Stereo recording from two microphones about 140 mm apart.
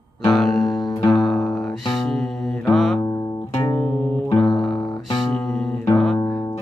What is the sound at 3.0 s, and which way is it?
Music, 25° left (ahead or behind).